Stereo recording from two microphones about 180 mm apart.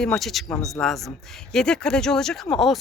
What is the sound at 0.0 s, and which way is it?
A woman's voice, centre (ahead or behind).